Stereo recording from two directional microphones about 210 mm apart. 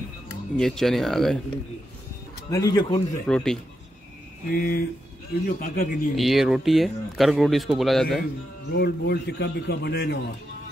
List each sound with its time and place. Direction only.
0.6 s speech: centre (ahead or behind)
2.5 s speech: 20° left (ahead or behind)
3.3 s speech: 5° left (ahead or behind)
4.5 s a man's voice: 45° left (ahead or behind)
6.1 s speech: centre (ahead or behind)
8.7 s a man's voice: 50° left (ahead or behind)